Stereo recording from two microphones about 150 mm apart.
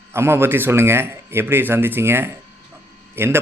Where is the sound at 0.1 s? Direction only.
15° right (ahead or behind).